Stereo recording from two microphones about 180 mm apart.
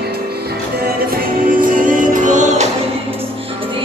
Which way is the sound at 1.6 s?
50° right (ahead or behind).